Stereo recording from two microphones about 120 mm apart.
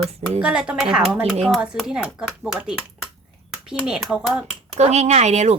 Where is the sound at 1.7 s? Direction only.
5° left (ahead or behind).